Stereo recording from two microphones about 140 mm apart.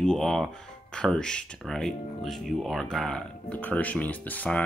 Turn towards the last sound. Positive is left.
turn(degrees=10)  # may be behind; listen again after turning